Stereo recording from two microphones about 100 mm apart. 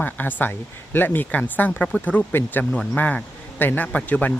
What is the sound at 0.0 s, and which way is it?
Speech, 20° left (ahead or behind).